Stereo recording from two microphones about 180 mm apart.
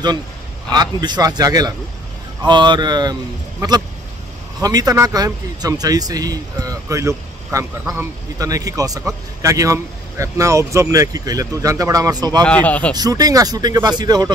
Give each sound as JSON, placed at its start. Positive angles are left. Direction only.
{"t": 0.7, "sound": "speech", "side_deg": -25}
{"t": 7.8, "sound": "speech", "side_deg": -5}
{"t": 8.4, "sound": "speech", "side_deg": -20}
{"t": 12.4, "sound": "a man's voice", "side_deg": 10}
{"t": 12.9, "sound": "speech", "side_deg": -20}